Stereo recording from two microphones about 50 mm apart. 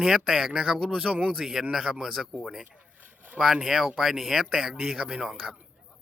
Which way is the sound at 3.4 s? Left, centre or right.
Centre.